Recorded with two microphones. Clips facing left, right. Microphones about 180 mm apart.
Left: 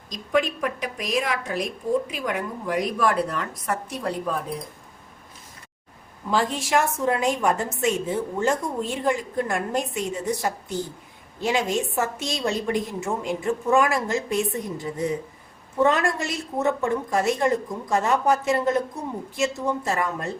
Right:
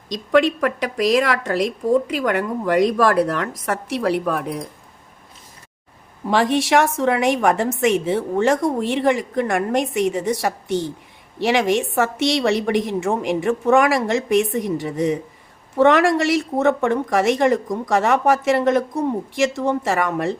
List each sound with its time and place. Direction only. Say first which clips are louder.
0.1 s a woman's voice: right 7 dB; 85° right
2.1 s a woman's voice: right 7 dB; 75° right (ahead or behind)
6.2 s a woman's voice: right 6 dB; 75° right (ahead or behind)